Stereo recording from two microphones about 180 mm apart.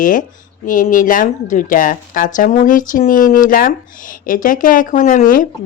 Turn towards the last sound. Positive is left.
turn(degrees=50)  # may be behind; listen again after turning